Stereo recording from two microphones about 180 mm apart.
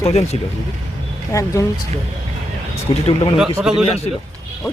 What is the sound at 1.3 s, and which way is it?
Speech, 15° left (ahead or behind).